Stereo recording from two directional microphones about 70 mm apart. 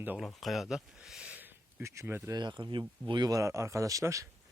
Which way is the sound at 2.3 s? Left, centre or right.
Right.